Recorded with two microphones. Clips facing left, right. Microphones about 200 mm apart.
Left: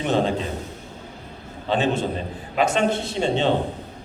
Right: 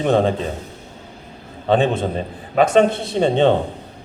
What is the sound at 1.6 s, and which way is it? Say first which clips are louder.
Speech: right 5 dB; 55° right (ahead or behind).